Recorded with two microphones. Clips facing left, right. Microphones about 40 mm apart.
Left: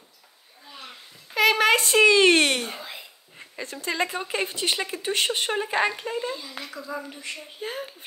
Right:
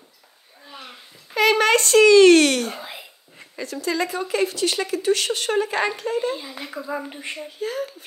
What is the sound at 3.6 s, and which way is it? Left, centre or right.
Speech, left.